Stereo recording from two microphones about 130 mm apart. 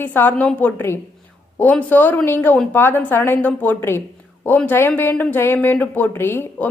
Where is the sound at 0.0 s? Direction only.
15° left (ahead or behind).